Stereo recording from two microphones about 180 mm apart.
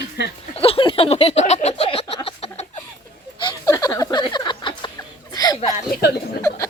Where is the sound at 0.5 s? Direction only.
30° left (ahead or behind).